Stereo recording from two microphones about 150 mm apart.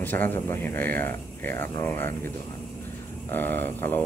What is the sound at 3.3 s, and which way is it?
Speech, 15° left (ahead or behind).